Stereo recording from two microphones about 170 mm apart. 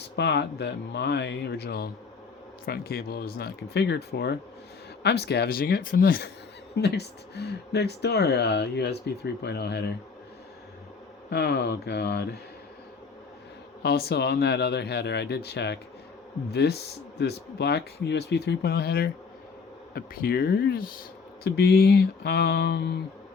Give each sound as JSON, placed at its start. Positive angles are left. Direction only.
{"t": 0.2, "sound": "speech", "side_deg": 85}
{"t": 6.7, "sound": "speech", "side_deg": 75}
{"t": 11.3, "sound": "speech", "side_deg": 75}
{"t": 13.8, "sound": "speech", "side_deg": 70}
{"t": 21.4, "sound": "speech", "side_deg": 70}